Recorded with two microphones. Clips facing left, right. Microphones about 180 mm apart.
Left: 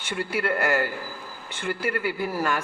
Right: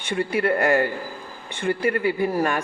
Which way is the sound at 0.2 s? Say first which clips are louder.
Right 5 dB; 20° right (ahead or behind).